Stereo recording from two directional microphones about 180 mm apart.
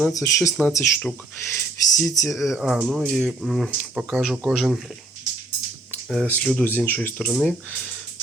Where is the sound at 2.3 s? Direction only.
Centre (ahead or behind).